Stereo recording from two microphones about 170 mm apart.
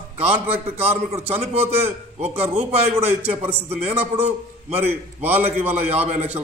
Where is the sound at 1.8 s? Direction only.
10° right (ahead or behind).